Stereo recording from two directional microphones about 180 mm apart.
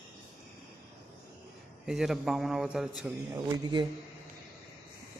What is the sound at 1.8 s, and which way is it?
A man's voice, centre (ahead or behind).